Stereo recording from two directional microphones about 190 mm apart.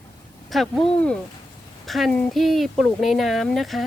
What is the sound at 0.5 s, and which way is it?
Speech, centre (ahead or behind).